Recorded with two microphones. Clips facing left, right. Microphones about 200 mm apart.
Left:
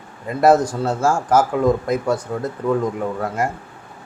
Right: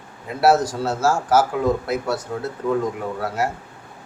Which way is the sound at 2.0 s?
10° left (ahead or behind).